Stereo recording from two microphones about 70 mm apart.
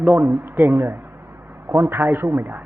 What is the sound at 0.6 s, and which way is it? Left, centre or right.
Speech, right.